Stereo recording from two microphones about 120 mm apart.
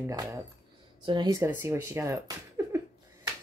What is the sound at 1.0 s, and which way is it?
Speech, 35° right (ahead or behind).